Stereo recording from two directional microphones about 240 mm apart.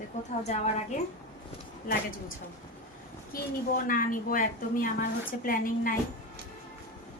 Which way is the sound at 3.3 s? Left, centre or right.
Left.